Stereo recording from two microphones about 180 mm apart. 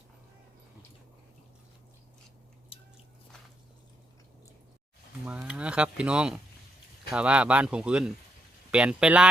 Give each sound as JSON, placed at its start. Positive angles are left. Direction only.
{"t": 2.7, "sound": "squish", "side_deg": 30}
{"t": 5.2, "sound": "speech", "side_deg": -5}